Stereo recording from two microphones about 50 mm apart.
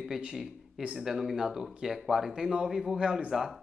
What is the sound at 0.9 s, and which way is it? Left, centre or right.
Speech, centre.